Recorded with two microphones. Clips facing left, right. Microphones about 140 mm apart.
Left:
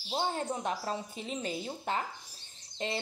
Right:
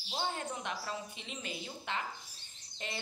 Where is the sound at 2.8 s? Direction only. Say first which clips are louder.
Left 8 dB; 30° left (ahead or behind).